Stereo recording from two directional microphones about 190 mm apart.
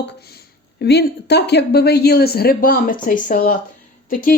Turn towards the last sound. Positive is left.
turn(degrees=45)  # may be behind; listen again after turning